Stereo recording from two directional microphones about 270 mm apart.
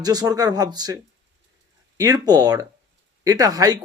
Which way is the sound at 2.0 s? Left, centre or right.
Centre.